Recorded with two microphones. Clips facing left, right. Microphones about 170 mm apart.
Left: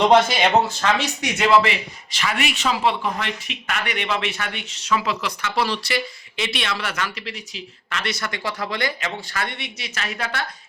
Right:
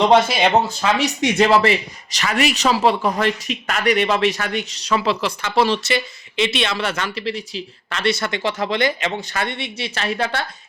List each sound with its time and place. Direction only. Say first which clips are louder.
0.1 s speech: right 1 dB; 5° right (ahead or behind)
1.4 s a man's voice: right 2 dB; 40° right (ahead or behind)